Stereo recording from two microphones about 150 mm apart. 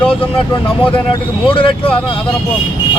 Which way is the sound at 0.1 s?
35° left (ahead or behind).